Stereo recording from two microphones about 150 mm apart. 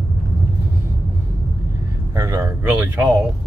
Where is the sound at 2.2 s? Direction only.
20° right (ahead or behind).